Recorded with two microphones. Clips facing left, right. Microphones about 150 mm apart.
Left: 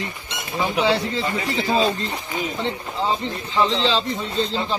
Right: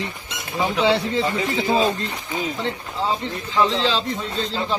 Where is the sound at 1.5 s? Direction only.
15° right (ahead or behind).